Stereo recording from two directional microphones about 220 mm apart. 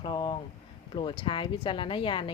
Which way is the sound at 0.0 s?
20° left (ahead or behind).